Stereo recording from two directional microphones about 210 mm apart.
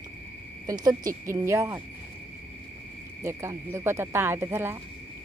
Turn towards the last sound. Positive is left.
turn(degrees=-10)  # may be behind; listen again after turning